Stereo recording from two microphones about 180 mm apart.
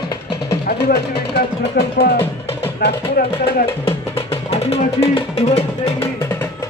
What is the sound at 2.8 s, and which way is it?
Speech, 60° left (ahead or behind).